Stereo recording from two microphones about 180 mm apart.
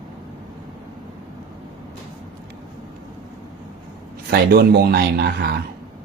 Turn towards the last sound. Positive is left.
turn(degrees=-60)  # may be behind; listen again after turning